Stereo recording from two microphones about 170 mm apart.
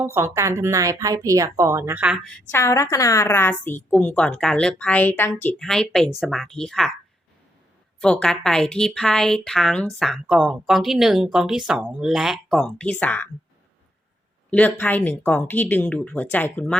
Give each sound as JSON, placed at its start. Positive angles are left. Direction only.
{"t": 0.0, "sound": "a woman's voice", "side_deg": -15}
{"t": 2.5, "sound": "a woman's voice", "side_deg": 15}
{"t": 8.0, "sound": "a woman's voice", "side_deg": 5}
{"t": 14.5, "sound": "speech", "side_deg": 10}